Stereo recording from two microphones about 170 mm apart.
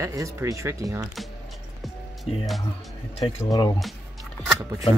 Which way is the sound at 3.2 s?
20° left (ahead or behind).